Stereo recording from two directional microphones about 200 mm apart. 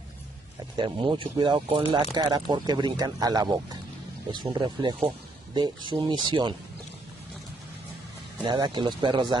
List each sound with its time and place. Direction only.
0.7 s speech: 25° right (ahead or behind)
8.5 s speech: 20° right (ahead or behind)